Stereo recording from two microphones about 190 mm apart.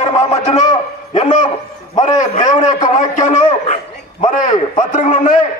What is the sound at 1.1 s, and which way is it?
A man's voice, 40° left (ahead or behind).